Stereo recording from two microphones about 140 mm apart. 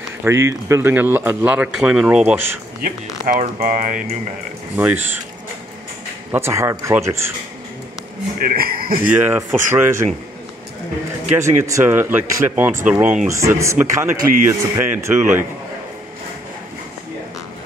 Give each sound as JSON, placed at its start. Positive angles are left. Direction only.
{"t": 0.2, "sound": "a man's voice", "side_deg": -20}
{"t": 3.5, "sound": "music", "side_deg": -75}
{"t": 4.7, "sound": "a man's voice", "side_deg": -15}
{"t": 6.3, "sound": "a man's voice", "side_deg": -20}
{"t": 8.5, "sound": "a man's voice", "side_deg": -90}
{"t": 9.1, "sound": "a man's voice", "side_deg": -15}
{"t": 11.3, "sound": "a man's voice", "side_deg": -20}
{"t": 13.3, "sound": "a man's voice", "side_deg": -20}